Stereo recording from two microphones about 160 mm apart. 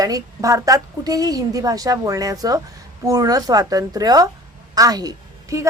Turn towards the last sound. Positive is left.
turn(degrees=-20)  # may be behind; listen again after turning